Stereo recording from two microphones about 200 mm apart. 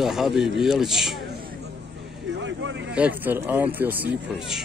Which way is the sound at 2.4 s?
65° right (ahead or behind).